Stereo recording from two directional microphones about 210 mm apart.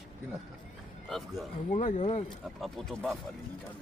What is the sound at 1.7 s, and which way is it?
Speech, 35° left (ahead or behind).